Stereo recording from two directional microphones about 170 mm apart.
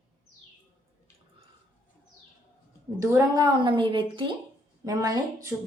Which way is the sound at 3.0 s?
15° right (ahead or behind).